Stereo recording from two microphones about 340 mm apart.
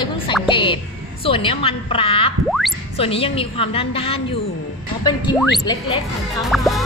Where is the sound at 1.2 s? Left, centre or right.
Centre.